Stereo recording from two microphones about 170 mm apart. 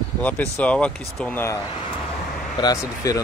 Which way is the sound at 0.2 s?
10° left (ahead or behind).